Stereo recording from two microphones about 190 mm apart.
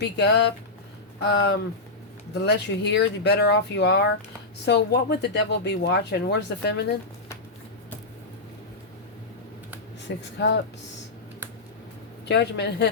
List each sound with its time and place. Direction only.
0.0 s speech: 65° left (ahead or behind)
10.2 s speech: 70° left (ahead or behind)
12.3 s speech: 60° left (ahead or behind)